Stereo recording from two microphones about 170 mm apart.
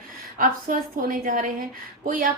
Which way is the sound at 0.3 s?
55° right (ahead or behind).